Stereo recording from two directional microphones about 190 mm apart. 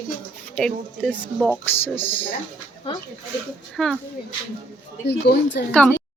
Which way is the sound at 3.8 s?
Centre (ahead or behind).